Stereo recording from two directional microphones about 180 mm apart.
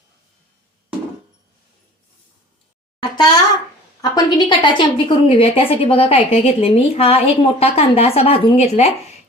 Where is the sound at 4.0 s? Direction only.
25° left (ahead or behind).